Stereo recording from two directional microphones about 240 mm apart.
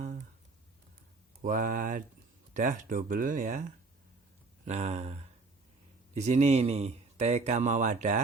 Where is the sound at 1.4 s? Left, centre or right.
Right.